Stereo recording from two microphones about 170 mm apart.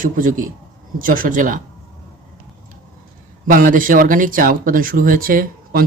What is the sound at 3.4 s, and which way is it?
Speech, 55° right (ahead or behind).